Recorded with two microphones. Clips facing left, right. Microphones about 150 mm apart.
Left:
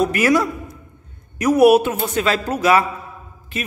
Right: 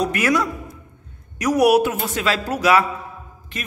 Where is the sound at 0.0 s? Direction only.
5° left (ahead or behind).